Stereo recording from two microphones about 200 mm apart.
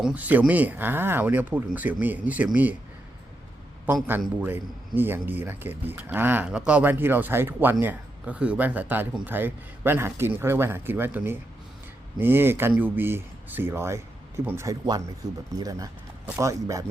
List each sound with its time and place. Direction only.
0.0 s speech: 5° right (ahead or behind)
3.8 s speech: 10° right (ahead or behind)